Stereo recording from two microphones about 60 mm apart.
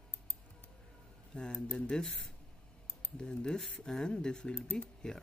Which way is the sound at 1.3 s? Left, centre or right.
Centre.